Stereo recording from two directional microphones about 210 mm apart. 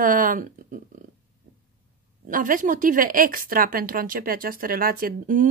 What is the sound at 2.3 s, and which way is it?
A woman's voice, 40° right (ahead or behind).